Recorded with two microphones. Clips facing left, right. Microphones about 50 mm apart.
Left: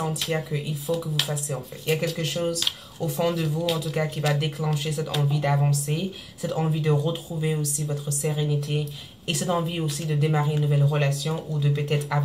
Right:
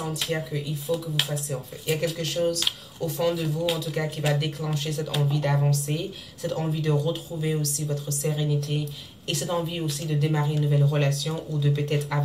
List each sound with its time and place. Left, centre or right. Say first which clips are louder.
0.0 s a sound: left 2 dB; centre
0.8 s speech: even; centre
3.6 s speech: left 1 dB; centre